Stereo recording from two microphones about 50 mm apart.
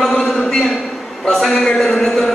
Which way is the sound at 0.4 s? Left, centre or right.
Centre.